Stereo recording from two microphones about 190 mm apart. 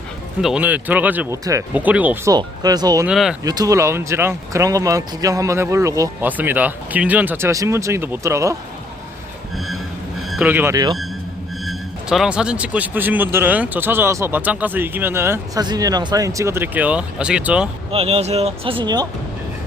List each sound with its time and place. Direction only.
0.4 s speech: 5° right (ahead or behind)
2.3 s speech: 20° right (ahead or behind)
3.1 s speech: centre (ahead or behind)
3.4 s speech: 20° right (ahead or behind)
10.2 s speech: 5° right (ahead or behind)
11.6 s speech: centre (ahead or behind)
17.9 s speech: 30° right (ahead or behind)